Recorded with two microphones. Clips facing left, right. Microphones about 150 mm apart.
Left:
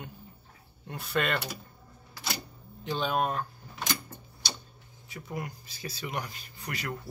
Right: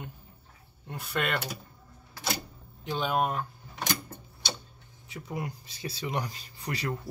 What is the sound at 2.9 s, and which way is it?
Speech, 10° right (ahead or behind).